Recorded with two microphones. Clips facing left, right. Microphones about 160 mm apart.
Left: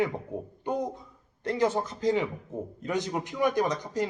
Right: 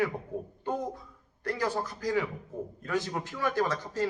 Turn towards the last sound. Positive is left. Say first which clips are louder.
# left 2 dB
turn(degrees=15)  # may be behind; listen again after turning